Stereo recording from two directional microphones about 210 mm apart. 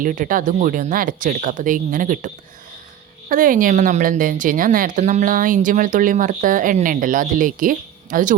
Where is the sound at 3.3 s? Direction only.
40° right (ahead or behind).